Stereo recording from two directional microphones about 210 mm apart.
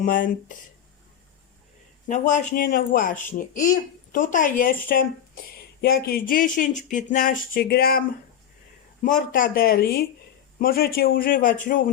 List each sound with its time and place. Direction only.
0.0 s speech: 40° left (ahead or behind)
2.0 s speech: 35° left (ahead or behind)
9.0 s speech: 40° left (ahead or behind)